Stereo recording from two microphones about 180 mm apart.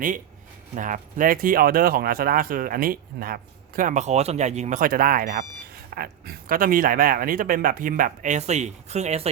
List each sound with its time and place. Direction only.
0.8 s speech: 45° right (ahead or behind)